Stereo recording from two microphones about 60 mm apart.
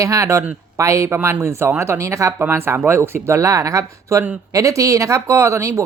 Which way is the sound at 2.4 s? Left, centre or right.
Right.